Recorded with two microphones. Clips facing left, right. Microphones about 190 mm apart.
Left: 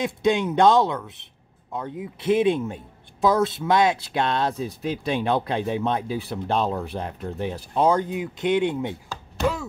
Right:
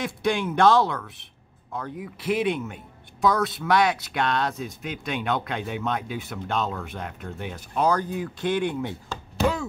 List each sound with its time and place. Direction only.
0.0 s speech: 20° left (ahead or behind)
9.4 s chopping: centre (ahead or behind)